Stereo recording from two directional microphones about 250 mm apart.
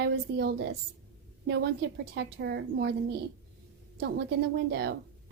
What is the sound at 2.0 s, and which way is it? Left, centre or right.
A woman's voice, right.